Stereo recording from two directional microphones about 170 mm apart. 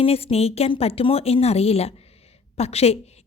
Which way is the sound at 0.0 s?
35° left (ahead or behind).